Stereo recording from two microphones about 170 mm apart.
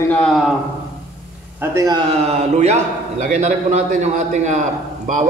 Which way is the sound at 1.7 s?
20° right (ahead or behind).